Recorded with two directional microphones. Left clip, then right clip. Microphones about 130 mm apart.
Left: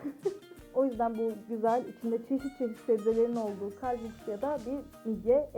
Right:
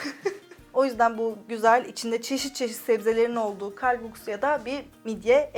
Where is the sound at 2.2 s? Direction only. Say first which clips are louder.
Right 5 dB; 50° left (ahead or behind).